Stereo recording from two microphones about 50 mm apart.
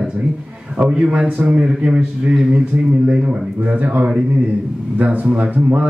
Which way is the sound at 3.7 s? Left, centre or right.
Right.